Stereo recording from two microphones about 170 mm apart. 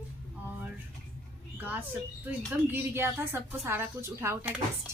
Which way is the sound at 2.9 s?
15° right (ahead or behind).